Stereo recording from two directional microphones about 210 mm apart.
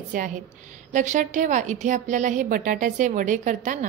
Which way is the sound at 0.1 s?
40° right (ahead or behind).